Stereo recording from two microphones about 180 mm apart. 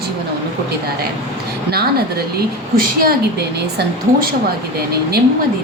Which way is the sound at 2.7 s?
55° right (ahead or behind).